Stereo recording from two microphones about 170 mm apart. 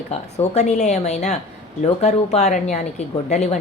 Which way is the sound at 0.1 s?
40° left (ahead or behind).